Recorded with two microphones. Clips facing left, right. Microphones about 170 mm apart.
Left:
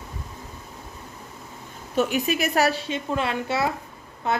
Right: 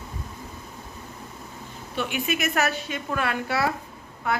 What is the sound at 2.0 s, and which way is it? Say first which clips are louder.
A woman's voice: left 5 dB; 40° left (ahead or behind).